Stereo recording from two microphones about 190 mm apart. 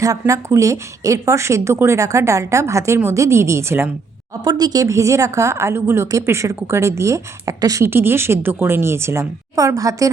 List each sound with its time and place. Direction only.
0.0 s a woman's voice: 15° right (ahead or behind)